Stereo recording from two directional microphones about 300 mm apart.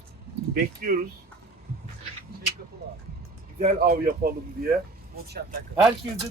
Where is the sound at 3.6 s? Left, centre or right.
Right.